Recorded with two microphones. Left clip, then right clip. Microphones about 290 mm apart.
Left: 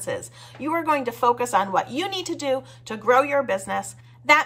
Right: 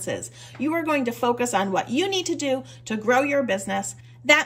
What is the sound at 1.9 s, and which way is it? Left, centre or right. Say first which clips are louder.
A woman's voice: right 3 dB; centre.